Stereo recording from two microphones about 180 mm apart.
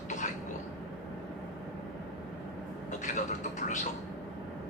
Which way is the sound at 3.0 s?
45° left (ahead or behind).